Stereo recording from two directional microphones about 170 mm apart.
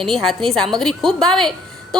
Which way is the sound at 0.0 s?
Centre (ahead or behind).